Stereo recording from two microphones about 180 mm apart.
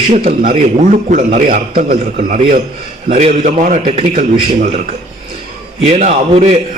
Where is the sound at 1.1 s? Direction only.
45° right (ahead or behind).